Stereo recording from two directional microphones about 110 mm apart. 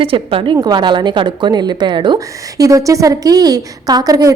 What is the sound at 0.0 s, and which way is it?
Speech, 55° right (ahead or behind).